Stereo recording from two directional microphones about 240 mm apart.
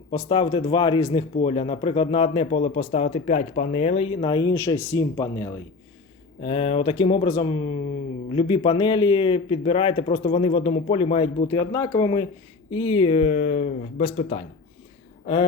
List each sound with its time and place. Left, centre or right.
0.1 s speech: left
6.4 s speech: left